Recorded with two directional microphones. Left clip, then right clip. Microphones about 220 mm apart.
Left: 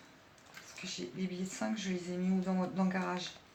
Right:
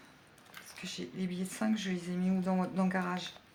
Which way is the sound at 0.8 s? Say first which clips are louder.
Even; 40° right (ahead or behind).